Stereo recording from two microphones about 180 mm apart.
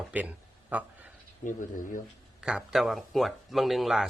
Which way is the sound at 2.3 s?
5° right (ahead or behind).